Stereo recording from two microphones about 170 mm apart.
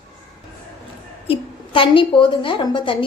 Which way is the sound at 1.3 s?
30° left (ahead or behind).